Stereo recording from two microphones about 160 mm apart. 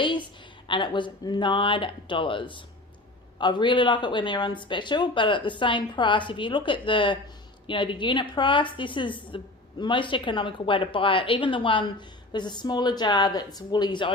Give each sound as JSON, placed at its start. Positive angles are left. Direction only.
{"t": 0.7, "sound": "a woman's voice", "side_deg": 30}